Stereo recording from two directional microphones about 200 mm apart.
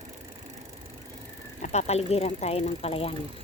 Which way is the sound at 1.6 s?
35° left (ahead or behind).